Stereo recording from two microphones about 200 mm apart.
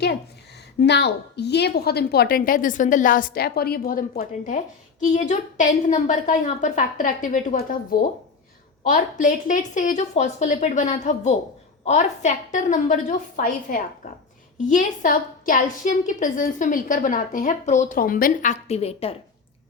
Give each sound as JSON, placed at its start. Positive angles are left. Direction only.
{"t": 0.8, "sound": "a woman's voice", "side_deg": 60}